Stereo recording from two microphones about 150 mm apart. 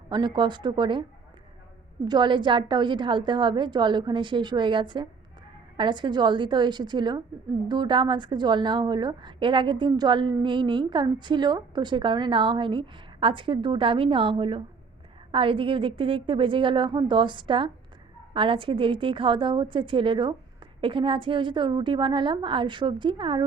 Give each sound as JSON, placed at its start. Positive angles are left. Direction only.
{"t": 0.1, "sound": "a woman's voice", "side_deg": -30}